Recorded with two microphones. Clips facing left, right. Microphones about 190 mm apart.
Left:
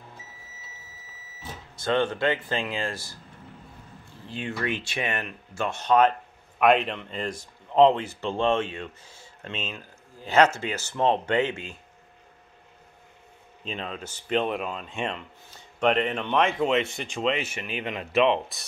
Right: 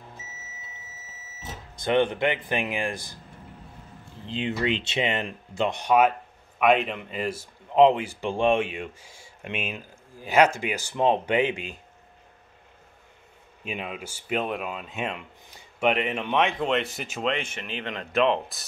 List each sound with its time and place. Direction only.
1.4 s speech: 15° right (ahead or behind)
4.3 s speech: 20° right (ahead or behind)
13.7 s speech: 10° right (ahead or behind)